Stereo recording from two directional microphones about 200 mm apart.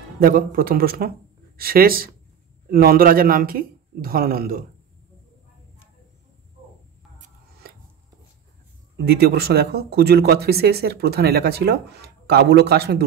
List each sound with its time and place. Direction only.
0.2 s speech: 45° right (ahead or behind)
8.9 s speech: 55° right (ahead or behind)